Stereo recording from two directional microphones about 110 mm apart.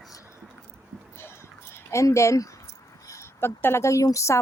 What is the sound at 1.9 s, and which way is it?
A woman's voice, 25° left (ahead or behind).